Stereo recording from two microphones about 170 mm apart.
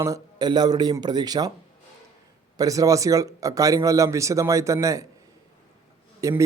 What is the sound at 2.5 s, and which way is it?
A man's voice, 20° right (ahead or behind).